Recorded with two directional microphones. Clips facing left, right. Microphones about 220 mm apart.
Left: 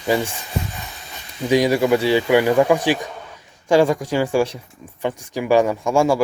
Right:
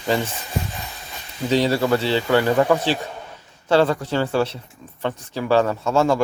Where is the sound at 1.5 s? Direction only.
15° left (ahead or behind).